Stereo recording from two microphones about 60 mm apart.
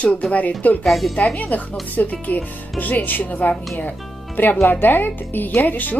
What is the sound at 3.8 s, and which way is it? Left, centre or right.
Music, left.